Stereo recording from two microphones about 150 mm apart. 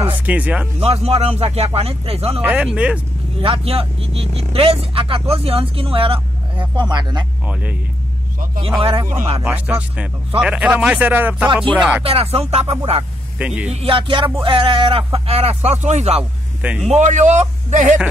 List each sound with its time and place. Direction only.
0.2 s speech: 10° right (ahead or behind)
0.7 s speech: 45° right (ahead or behind)
2.4 s speech: 10° right (ahead or behind)
3.3 s speech: 35° right (ahead or behind)
7.4 s speech: 10° right (ahead or behind)
9.0 s speech: 15° right (ahead or behind)
12.0 s speech: 40° right (ahead or behind)
13.4 s speech: 10° right (ahead or behind)
13.7 s speech: 40° right (ahead or behind)
16.2 s speech: 5° right (ahead or behind)
16.9 s speech: 50° right (ahead or behind)